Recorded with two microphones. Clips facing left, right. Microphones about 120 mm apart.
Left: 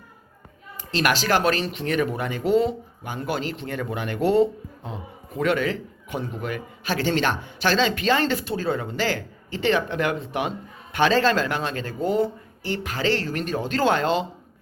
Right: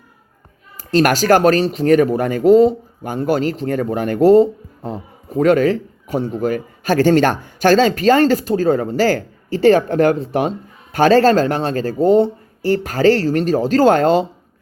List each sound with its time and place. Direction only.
0.8 s speech: 45° right (ahead or behind)